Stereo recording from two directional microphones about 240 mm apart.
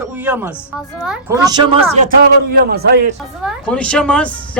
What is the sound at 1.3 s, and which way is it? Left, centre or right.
Speech, centre.